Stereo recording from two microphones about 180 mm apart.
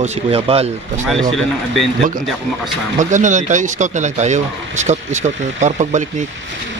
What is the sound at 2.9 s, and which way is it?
Speech, 45° right (ahead or behind).